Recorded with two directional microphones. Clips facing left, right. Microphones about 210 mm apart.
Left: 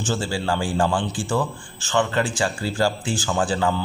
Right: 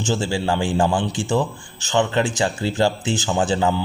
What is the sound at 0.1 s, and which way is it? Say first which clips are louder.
A man's voice: right 3 dB; 20° right (ahead or behind).